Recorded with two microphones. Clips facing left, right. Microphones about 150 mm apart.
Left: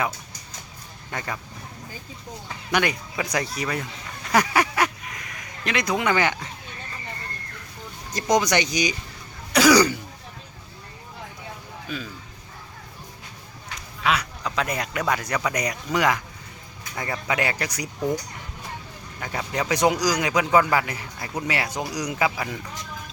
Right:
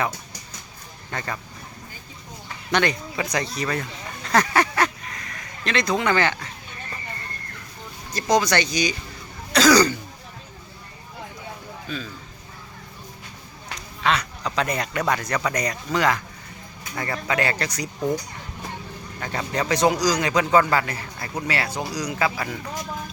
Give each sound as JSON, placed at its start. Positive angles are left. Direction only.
{"t": 1.1, "sound": "a man's voice", "side_deg": 10}
{"t": 2.7, "sound": "a man's voice", "side_deg": 10}
{"t": 8.1, "sound": "a man's voice", "side_deg": 15}
{"t": 11.9, "sound": "a man's voice", "side_deg": 10}
{"t": 14.0, "sound": "a man's voice", "side_deg": 5}
{"t": 19.2, "sound": "a man's voice", "side_deg": 10}